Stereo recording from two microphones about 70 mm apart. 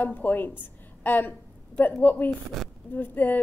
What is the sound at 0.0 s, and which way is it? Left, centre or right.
A woman's voice, left.